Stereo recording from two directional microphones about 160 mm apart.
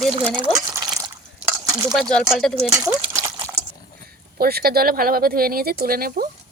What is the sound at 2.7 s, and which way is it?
Speech, 20° right (ahead or behind).